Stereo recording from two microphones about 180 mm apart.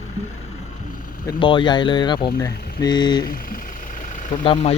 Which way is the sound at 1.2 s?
25° left (ahead or behind).